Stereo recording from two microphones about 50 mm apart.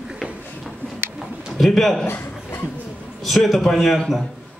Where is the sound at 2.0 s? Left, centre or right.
Left.